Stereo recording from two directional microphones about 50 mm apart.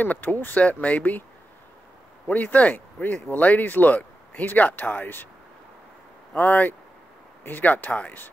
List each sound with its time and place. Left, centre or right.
0.0 s speech: left
0.6 s speech: left
2.2 s speech: left
6.4 s speech: left